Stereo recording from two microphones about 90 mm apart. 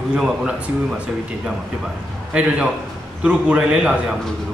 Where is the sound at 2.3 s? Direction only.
15° right (ahead or behind).